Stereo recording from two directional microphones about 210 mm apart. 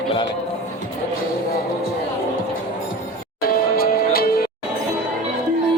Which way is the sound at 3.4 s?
45° left (ahead or behind).